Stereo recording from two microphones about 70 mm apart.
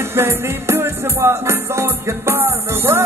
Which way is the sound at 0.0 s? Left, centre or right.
Right.